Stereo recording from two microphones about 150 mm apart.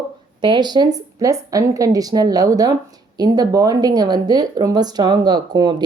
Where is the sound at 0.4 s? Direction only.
30° right (ahead or behind).